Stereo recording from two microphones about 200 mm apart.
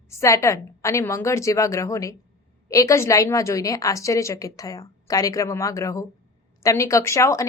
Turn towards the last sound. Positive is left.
turn(degrees=15)  # may be behind; listen again after turning